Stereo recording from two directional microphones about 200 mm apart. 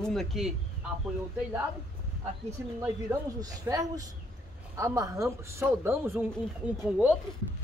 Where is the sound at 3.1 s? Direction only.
15° right (ahead or behind).